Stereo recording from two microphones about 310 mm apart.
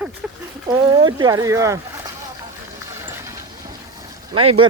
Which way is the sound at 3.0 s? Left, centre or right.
Centre.